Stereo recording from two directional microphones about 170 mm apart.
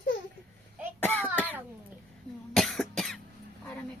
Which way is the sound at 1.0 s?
10° left (ahead or behind).